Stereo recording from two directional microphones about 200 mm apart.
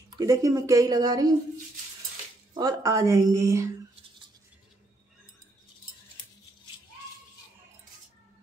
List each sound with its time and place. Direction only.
0.1 s a woman's voice: 15° right (ahead or behind)
2.5 s a woman's voice: 15° right (ahead or behind)